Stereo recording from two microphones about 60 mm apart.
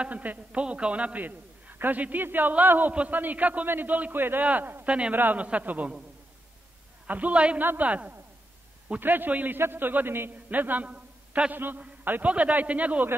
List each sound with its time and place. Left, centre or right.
0.0 s a man's voice: right
4.8 s a man's voice: centre
5.1 s a man's voice: right
7.1 s a man's voice: right
11.5 s a man's voice: right